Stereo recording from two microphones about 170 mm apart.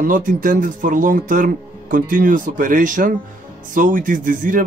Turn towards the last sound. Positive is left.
turn(degrees=-50)  # may be behind; listen again after turning